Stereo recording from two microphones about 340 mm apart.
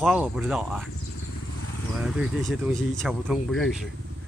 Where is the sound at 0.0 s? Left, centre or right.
Centre.